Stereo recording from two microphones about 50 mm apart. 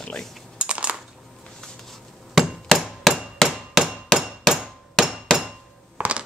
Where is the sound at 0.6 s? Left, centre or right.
Right.